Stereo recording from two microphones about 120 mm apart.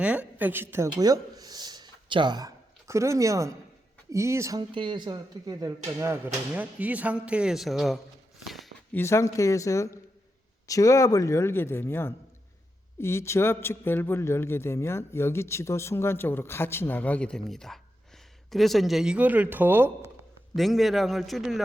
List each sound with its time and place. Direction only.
0.0 s a woman's voice: 10° right (ahead or behind)
4.7 s speech: 40° right (ahead or behind); by 6.3 s 25° right (ahead or behind)
6.5 s speech: 10° right (ahead or behind)
8.4 s a sound: centre (ahead or behind)
8.9 s a man's voice: 20° left (ahead or behind); by 19.9 s 15° right (ahead or behind)
20.6 s a man's voice: centre (ahead or behind)